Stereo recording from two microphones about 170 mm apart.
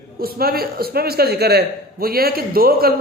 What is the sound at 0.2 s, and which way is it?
A man's voice, 60° right (ahead or behind).